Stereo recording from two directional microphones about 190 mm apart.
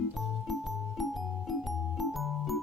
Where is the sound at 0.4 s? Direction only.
Centre (ahead or behind).